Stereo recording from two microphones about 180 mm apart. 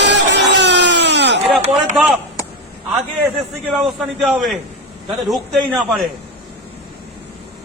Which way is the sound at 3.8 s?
Centre (ahead or behind).